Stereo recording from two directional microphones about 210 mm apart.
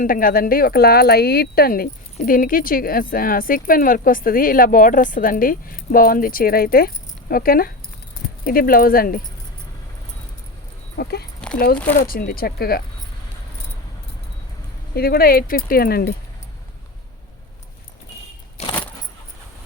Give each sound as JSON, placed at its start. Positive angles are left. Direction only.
{"t": 0.0, "sound": "speech", "side_deg": 40}
{"t": 10.9, "sound": "speech", "side_deg": 50}
{"t": 11.3, "sound": "a sound", "side_deg": 5}
{"t": 11.9, "sound": "speech", "side_deg": 50}
{"t": 14.9, "sound": "speech", "side_deg": 45}
{"t": 18.7, "sound": "keys jangling", "side_deg": 5}